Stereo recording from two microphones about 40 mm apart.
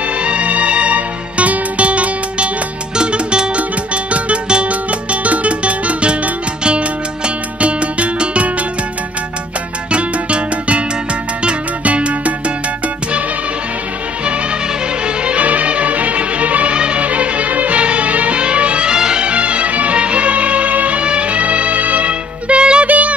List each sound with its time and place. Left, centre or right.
0.2 s music: right
9.8 s music: right
15.2 s music: right
18.9 s music: centre
19.2 s music: right
22.8 s music: right